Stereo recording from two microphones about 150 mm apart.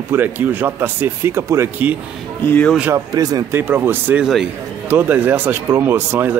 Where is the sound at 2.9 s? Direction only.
25° right (ahead or behind).